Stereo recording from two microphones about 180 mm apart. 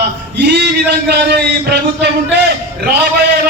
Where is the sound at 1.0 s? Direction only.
65° right (ahead or behind).